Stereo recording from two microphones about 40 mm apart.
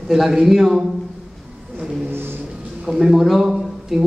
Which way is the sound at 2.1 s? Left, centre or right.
Right.